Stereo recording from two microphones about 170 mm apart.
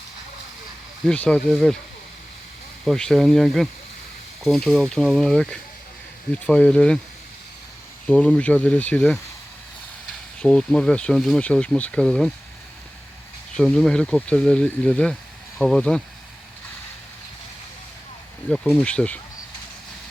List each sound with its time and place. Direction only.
1.0 s speech: 5° left (ahead or behind)
2.8 s speech: centre (ahead or behind)
8.0 s speech: 5° left (ahead or behind)
10.4 s speech: 5° left (ahead or behind)
13.6 s speech: centre (ahead or behind)
18.5 s speech: centre (ahead or behind)